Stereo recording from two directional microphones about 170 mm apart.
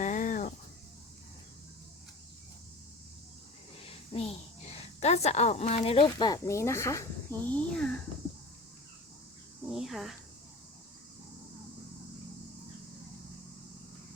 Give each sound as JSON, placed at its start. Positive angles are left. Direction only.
{"t": 0.0, "sound": "cricket", "side_deg": 50}
{"t": 3.8, "sound": "a woman's voice", "side_deg": 35}
{"t": 7.4, "sound": "speech", "side_deg": 5}
{"t": 9.6, "sound": "speech", "side_deg": 0}